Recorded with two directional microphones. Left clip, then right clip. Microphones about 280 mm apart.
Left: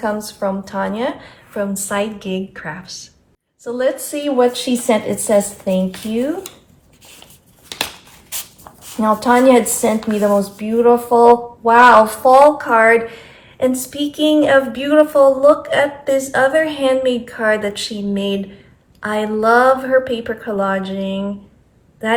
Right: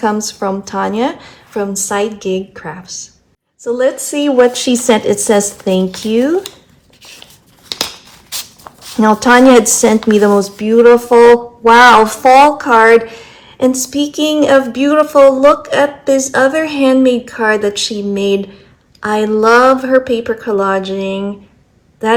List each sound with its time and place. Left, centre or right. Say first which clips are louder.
0.0 s a woman's voice: right 5 dB; right
9.2 s a woman's voice: right 5 dB; right